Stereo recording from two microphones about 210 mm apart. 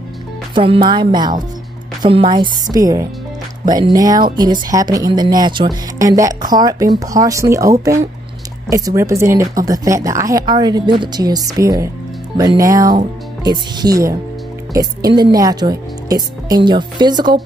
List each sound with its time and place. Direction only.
0.6 s a woman's voice: 25° right (ahead or behind)